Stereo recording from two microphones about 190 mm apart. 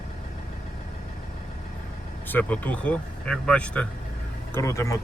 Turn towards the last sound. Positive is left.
turn(degrees=15)  # may be behind; listen again after turning